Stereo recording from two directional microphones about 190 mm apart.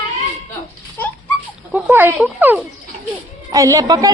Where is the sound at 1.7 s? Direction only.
10° right (ahead or behind).